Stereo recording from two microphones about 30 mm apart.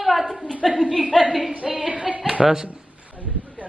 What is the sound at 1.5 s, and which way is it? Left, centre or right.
Speech, right.